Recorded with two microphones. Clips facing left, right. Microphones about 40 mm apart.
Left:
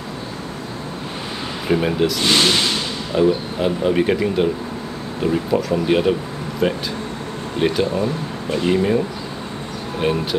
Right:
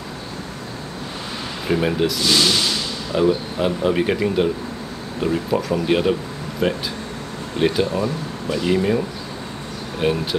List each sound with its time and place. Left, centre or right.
1.7 s speech: centre
2.1 s speech: left
3.2 s speech: centre
10.0 s speech: centre